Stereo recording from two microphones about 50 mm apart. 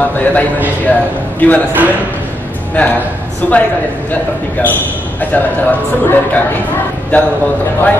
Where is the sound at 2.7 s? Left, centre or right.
Left.